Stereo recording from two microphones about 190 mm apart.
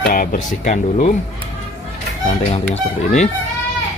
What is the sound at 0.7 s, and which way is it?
Speech, 35° left (ahead or behind).